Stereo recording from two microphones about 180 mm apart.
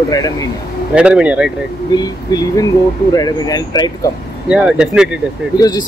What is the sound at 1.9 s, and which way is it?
Speech, 20° left (ahead or behind).